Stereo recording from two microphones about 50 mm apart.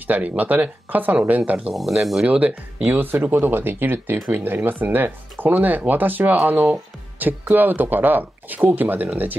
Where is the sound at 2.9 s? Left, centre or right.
Right.